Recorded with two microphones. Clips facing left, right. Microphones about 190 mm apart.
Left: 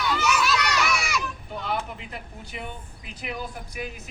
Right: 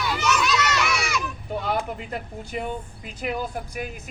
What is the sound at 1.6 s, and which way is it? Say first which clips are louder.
Speech: right 2 dB; 45° right (ahead or behind).